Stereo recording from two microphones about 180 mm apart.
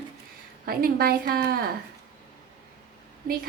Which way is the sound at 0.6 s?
55° right (ahead or behind).